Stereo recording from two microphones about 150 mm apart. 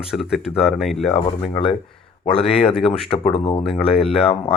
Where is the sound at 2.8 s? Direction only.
40° left (ahead or behind).